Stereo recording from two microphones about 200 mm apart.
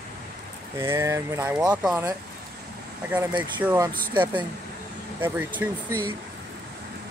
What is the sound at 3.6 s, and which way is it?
Speech, 15° right (ahead or behind).